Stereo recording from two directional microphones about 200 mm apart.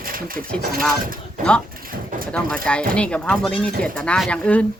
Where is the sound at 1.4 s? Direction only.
40° right (ahead or behind).